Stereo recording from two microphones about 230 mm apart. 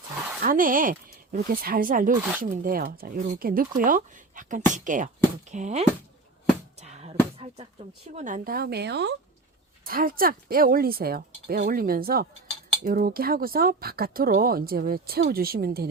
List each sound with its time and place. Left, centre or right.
0.4 s speech: right
6.7 s music: right
8.1 s a woman's voice: right